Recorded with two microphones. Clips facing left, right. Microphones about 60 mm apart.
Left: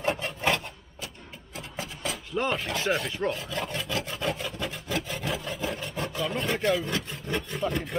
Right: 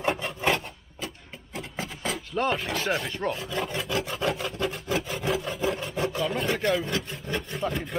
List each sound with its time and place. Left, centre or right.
0.1 s filing: centre
1.0 s a sound: right
2.3 s speech: centre
4.3 s rub: centre
4.9 s wood: centre